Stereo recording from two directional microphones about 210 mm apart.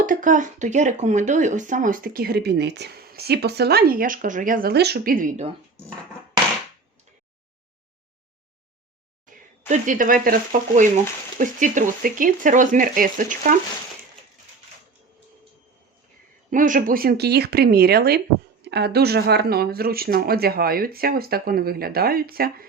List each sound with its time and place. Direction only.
0.0 s speech: 40° right (ahead or behind)
9.2 s speech: 35° right (ahead or behind)
16.5 s speech: 40° right (ahead or behind)